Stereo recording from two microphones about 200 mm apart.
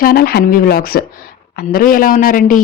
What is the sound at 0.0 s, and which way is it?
Speech, 50° left (ahead or behind).